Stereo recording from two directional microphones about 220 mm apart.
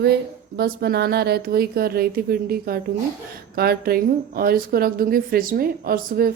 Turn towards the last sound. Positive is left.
turn(degrees=-45)  # may be behind; listen again after turning